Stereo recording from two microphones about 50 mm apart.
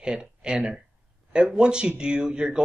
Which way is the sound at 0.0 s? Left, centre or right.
Centre.